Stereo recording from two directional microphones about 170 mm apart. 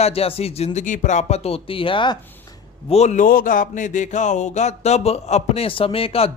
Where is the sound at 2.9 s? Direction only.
40° left (ahead or behind).